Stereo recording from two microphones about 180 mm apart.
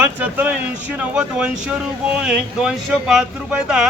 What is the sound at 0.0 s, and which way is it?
Speech, 10° right (ahead or behind).